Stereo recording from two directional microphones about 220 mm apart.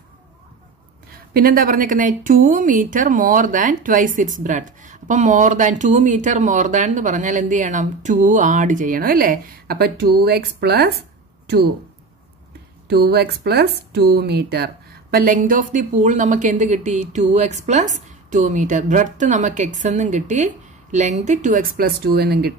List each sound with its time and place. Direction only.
1.3 s speech: 40° right (ahead or behind)
12.8 s speech: 45° right (ahead or behind)